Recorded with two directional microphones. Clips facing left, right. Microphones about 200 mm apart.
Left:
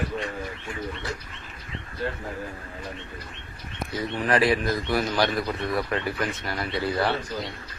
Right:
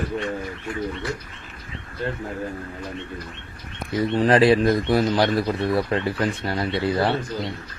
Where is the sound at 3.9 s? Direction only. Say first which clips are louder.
Right 7 dB; 30° right (ahead or behind).